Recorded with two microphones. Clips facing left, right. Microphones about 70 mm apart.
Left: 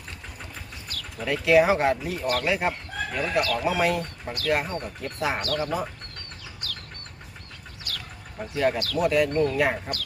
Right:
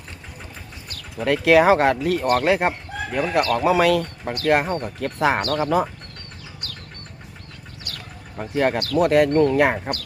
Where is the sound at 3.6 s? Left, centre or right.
Right.